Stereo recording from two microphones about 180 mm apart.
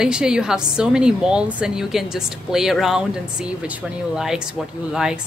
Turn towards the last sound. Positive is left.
turn(degrees=-5)  # may be behind; listen again after turning